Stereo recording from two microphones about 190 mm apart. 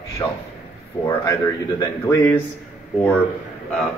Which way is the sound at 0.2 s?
20° left (ahead or behind).